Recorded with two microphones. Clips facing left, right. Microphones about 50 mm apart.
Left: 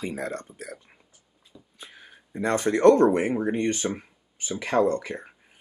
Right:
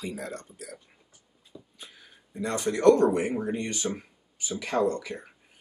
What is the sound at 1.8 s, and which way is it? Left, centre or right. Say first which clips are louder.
Speech: left 3 dB; left.